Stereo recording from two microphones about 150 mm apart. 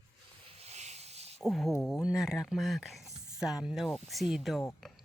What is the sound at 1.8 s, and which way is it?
Speech, centre (ahead or behind).